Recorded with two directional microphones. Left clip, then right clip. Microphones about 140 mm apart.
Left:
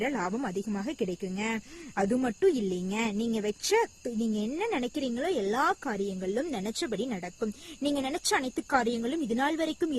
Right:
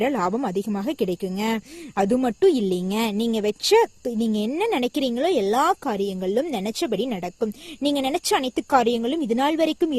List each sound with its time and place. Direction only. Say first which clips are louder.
0.0 s speech: right 8 dB; 50° right (ahead or behind)